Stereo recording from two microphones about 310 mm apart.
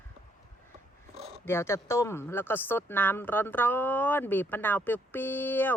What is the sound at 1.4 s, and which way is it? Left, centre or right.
Speech, centre.